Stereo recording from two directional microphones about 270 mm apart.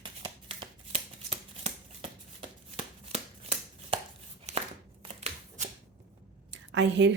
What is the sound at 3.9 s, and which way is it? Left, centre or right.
Chopping, right.